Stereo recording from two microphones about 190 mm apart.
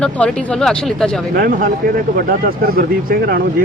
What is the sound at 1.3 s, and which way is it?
Speech, 50° right (ahead or behind).